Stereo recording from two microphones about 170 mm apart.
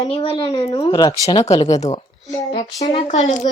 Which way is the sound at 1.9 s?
20° left (ahead or behind).